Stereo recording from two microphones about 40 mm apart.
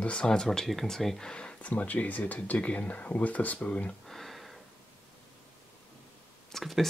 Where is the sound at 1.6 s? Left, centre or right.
Left.